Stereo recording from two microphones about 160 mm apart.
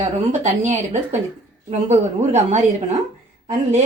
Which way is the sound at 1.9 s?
45° right (ahead or behind).